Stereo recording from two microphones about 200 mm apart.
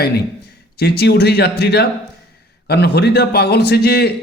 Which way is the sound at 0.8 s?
55° left (ahead or behind).